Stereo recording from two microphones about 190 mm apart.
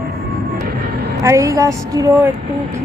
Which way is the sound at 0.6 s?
50° right (ahead or behind).